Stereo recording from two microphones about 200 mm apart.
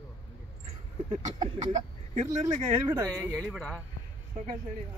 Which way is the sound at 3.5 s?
Centre (ahead or behind).